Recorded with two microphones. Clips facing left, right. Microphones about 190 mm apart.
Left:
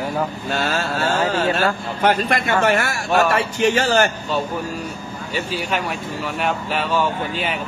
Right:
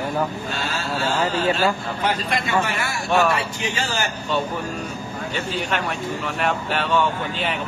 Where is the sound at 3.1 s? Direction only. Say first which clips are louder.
Left 2 dB; centre (ahead or behind).